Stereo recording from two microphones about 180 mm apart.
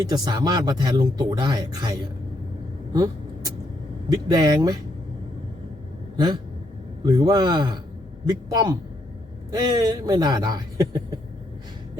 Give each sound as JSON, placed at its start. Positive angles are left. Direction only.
{"t": 0.0, "sound": "speech", "side_deg": -20}
{"t": 2.9, "sound": "vehicle", "side_deg": -20}
{"t": 4.1, "sound": "speech", "side_deg": -20}
{"t": 7.0, "sound": "speech", "side_deg": -25}